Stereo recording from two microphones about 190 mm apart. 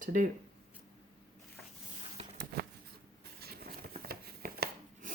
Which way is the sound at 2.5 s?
55° right (ahead or behind).